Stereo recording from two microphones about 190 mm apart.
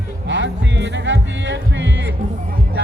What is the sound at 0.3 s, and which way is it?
Music, 70° right (ahead or behind).